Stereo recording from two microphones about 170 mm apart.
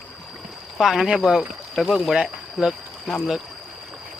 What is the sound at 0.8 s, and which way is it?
Speech, centre (ahead or behind).